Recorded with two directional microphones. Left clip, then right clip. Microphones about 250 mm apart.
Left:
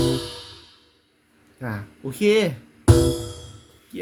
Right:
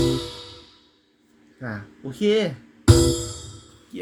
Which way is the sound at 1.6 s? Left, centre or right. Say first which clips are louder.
Left 2 dB; centre.